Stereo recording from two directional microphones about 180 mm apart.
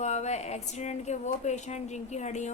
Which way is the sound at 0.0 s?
40° left (ahead or behind).